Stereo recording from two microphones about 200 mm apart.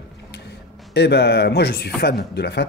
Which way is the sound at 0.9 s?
55° left (ahead or behind).